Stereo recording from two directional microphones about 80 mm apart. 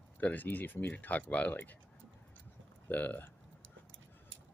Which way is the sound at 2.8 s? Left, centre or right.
Left.